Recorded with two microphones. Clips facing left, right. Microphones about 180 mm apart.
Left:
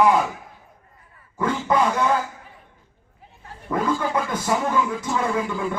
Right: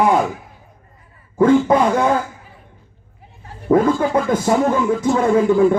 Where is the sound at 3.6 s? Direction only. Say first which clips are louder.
Right 9 dB; 50° right (ahead or behind).